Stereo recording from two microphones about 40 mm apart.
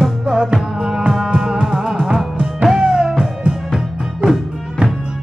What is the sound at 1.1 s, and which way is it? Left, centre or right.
Music, centre.